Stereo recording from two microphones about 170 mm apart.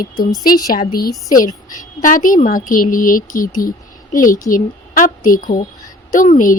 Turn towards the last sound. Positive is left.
turn(degrees=55)  # may be behind; listen again after turning